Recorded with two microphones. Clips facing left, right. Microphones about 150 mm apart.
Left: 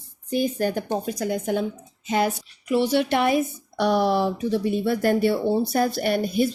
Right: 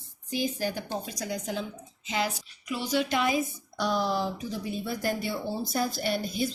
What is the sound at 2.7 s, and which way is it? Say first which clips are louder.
Speech: left 7 dB; 65° left (ahead or behind).